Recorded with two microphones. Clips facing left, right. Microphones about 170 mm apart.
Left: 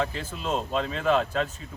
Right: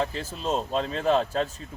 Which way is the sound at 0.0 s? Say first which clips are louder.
Right 1 dB; 30° right (ahead or behind).